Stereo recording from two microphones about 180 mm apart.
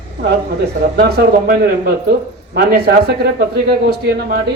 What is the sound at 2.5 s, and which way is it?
Speech, 60° right (ahead or behind).